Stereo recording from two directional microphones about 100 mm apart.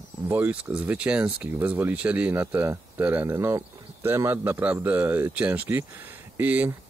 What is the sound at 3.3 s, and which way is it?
Speech, 25° right (ahead or behind).